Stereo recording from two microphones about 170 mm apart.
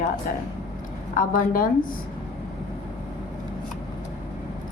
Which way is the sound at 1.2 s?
55° left (ahead or behind).